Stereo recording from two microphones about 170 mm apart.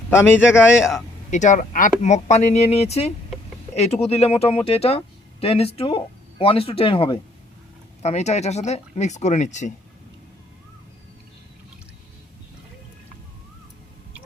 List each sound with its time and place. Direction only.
0.1 s a man's voice: 15° left (ahead or behind)
1.3 s speech: 45° left (ahead or behind)